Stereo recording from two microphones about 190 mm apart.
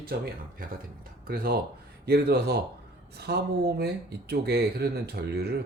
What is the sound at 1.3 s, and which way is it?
Speech, 55° right (ahead or behind).